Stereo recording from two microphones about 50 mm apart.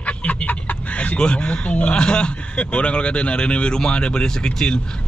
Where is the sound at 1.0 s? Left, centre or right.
Left.